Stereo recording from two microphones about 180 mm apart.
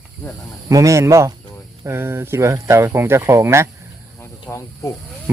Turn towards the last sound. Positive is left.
turn(degrees=15)  # may be behind; listen again after turning